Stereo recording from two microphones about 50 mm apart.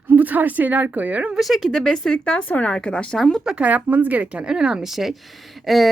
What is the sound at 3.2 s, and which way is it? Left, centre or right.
Speech, centre.